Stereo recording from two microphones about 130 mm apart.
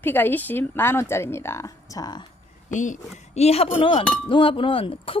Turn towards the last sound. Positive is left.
turn(degrees=45)  # may be behind; listen again after turning